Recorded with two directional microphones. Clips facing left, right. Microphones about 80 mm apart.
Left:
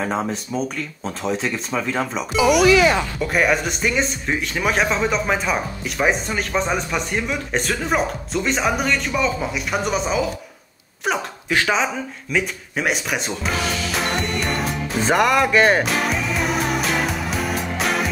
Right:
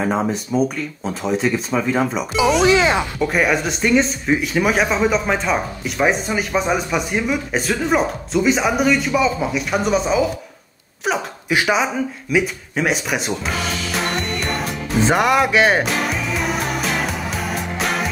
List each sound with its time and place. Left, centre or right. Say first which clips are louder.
0.0 s speech: right 3 dB; centre
2.6 s speech: even; right
3.2 s speech: right 1 dB; centre
11.1 s a sound: right 2 dB; centre